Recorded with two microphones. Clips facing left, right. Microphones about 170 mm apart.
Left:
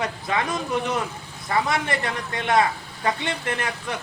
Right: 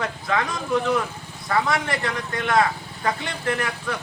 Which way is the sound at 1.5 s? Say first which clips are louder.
Right 1 dB; 25° left (ahead or behind).